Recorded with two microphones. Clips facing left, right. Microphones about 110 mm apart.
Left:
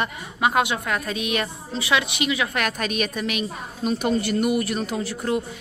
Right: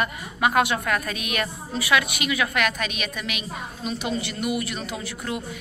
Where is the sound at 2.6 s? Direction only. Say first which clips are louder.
Left 2 dB; 40° left (ahead or behind).